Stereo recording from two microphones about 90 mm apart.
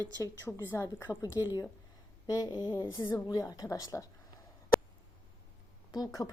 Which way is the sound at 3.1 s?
45° left (ahead or behind).